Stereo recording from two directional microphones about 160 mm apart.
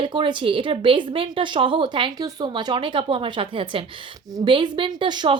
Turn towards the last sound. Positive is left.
turn(degrees=-25)  # may be behind; listen again after turning